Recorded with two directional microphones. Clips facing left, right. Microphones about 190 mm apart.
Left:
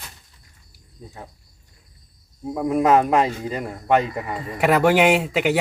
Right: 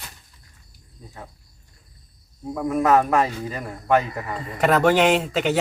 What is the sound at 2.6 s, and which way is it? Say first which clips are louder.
A man's voice: left 2 dB; 20° left (ahead or behind).